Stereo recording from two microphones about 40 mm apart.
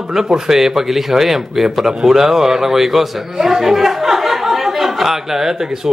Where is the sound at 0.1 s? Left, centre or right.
Centre.